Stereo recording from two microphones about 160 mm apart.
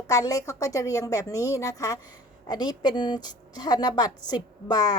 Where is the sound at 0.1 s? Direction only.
20° left (ahead or behind).